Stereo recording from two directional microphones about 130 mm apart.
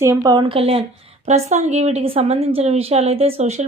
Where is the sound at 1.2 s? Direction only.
60° right (ahead or behind).